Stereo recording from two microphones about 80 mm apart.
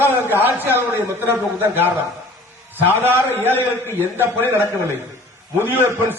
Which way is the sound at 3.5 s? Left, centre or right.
Left.